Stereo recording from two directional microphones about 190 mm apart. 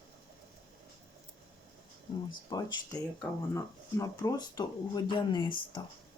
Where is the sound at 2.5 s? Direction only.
20° left (ahead or behind).